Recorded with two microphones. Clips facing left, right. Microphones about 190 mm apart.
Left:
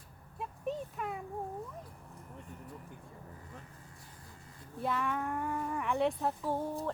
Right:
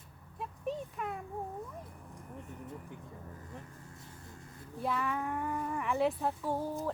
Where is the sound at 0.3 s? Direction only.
Centre (ahead or behind).